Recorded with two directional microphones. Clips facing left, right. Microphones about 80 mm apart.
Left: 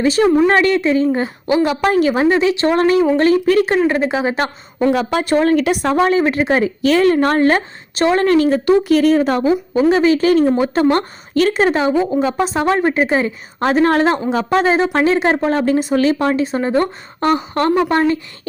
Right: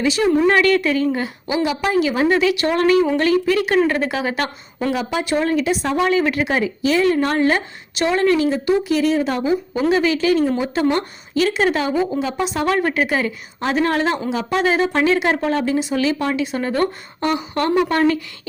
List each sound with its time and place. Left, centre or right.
0.0 s speech: left
0.4 s a woman's voice: left
1.5 s a woman's voice: left
2.4 s a woman's voice: left
3.8 s a woman's voice: centre
4.9 s a woman's voice: left
6.0 s speech: left
6.8 s a woman's voice: left
12.2 s a woman's voice: left
13.6 s speech: left
17.2 s speech: left
17.7 s a woman's voice: left